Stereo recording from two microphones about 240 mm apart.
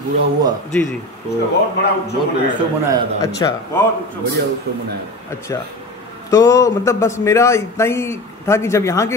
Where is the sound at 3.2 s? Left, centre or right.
Centre.